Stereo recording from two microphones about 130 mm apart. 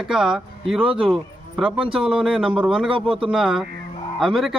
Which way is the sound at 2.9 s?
45° right (ahead or behind).